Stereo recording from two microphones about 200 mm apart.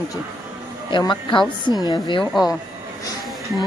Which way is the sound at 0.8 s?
25° left (ahead or behind).